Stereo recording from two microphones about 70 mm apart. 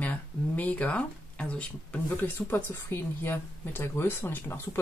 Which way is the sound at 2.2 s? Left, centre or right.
Left.